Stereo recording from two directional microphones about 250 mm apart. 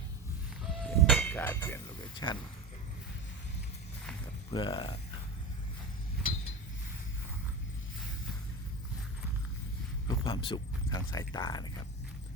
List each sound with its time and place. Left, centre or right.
0.6 s a sound: centre
4.5 s speech: centre
10.2 s speech: centre